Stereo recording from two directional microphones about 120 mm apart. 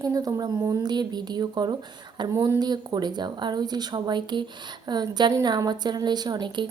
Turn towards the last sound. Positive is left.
turn(degrees=-40)  # may be behind; listen again after turning